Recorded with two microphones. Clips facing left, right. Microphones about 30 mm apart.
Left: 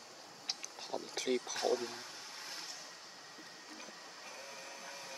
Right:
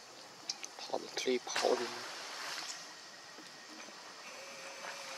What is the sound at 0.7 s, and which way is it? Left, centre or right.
Insect, centre.